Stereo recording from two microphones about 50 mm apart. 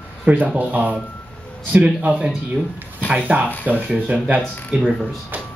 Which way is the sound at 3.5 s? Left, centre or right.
Left.